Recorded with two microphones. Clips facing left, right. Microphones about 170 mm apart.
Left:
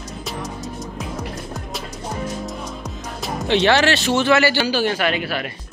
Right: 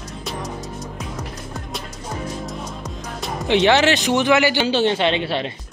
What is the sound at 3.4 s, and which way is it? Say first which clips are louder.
A man's voice: right 1 dB; 15° right (ahead or behind).